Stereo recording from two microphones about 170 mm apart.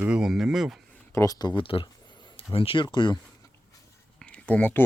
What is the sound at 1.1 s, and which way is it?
Speech, 20° left (ahead or behind).